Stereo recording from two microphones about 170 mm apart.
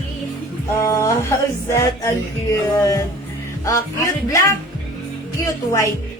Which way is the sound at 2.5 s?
20° left (ahead or behind).